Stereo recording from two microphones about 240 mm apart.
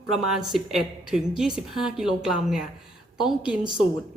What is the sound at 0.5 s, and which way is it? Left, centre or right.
A woman's voice, centre.